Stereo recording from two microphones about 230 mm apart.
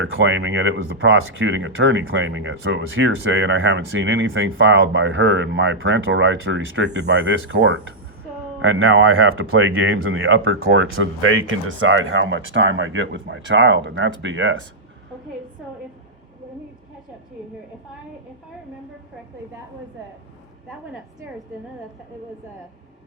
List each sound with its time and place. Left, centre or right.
0.0 s speech: right